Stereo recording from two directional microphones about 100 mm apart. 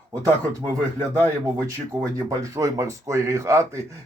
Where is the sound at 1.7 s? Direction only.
35° right (ahead or behind).